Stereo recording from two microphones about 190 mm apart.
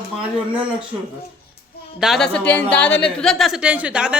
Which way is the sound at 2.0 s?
Centre (ahead or behind).